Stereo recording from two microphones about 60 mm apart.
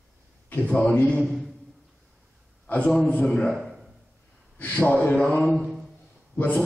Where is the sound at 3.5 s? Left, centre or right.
Centre.